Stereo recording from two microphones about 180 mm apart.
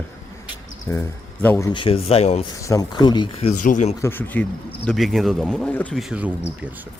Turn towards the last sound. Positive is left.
turn(degrees=-5)  # may be behind; listen again after turning